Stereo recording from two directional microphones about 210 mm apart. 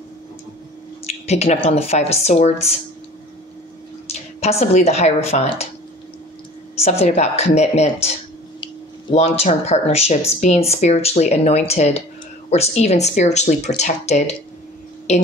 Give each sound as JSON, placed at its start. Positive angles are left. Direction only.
{"t": 1.0, "sound": "speech", "side_deg": 30}
{"t": 4.1, "sound": "speech", "side_deg": 30}
{"t": 6.8, "sound": "speech", "side_deg": 30}
{"t": 9.1, "sound": "speech", "side_deg": 30}